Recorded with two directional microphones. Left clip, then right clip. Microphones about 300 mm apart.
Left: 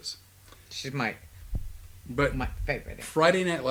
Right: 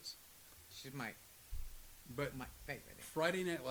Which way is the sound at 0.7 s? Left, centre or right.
Centre.